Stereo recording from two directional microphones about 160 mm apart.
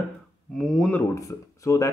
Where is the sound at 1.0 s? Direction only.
20° left (ahead or behind).